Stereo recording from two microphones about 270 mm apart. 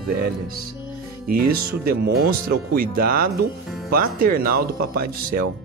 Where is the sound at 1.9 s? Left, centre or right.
Right.